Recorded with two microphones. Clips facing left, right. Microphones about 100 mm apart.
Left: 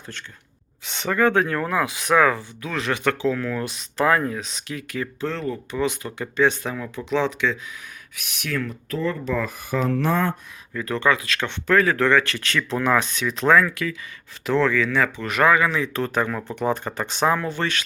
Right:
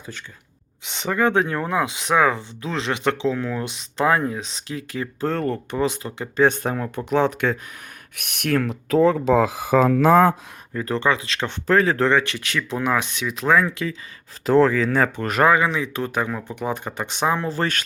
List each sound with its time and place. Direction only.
0.9 s speech: 20° right (ahead or behind)
5.2 s speech: 50° right (ahead or behind)
5.7 s speech: 30° right (ahead or behind)
6.3 s speech: 40° right (ahead or behind)
8.1 s speech: 60° right (ahead or behind); by 9.6 s 90° right
10.8 s speech: 30° right (ahead or behind); by 13.7 s 10° right (ahead or behind)
13.7 s speech: 25° right (ahead or behind)
14.4 s speech: 40° right (ahead or behind)
15.4 s speech: 25° right (ahead or behind)
17.5 s speech: 40° right (ahead or behind)